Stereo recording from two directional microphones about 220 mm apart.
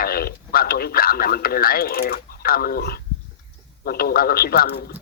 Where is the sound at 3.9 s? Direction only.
45° left (ahead or behind).